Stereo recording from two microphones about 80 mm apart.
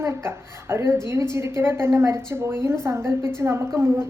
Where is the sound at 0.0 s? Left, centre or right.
Right.